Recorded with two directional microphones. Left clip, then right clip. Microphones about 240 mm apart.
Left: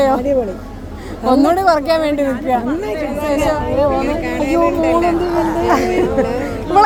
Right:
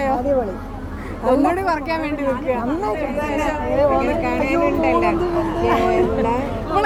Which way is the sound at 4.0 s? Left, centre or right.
Left.